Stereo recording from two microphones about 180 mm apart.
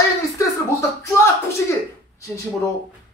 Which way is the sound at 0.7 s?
15° left (ahead or behind).